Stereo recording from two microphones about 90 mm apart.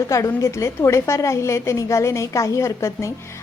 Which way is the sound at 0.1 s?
35° left (ahead or behind).